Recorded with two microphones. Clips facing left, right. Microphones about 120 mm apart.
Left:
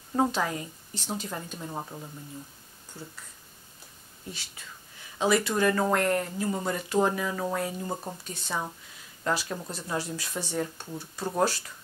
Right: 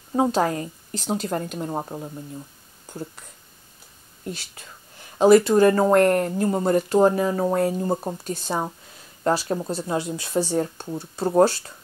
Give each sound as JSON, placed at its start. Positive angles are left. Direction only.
{"t": 0.3, "sound": "speech", "side_deg": -45}
{"t": 1.0, "sound": "speech", "side_deg": -90}
{"t": 1.3, "sound": "speech", "side_deg": -60}
{"t": 1.7, "sound": "speech", "side_deg": -40}
{"t": 5.2, "sound": "speech", "side_deg": -40}
{"t": 6.0, "sound": "speech", "side_deg": -55}